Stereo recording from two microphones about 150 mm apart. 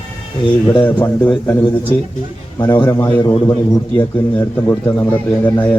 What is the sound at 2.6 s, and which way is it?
A man's voice, 30° left (ahead or behind).